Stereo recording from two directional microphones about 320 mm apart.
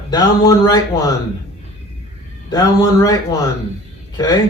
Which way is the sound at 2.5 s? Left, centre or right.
Centre.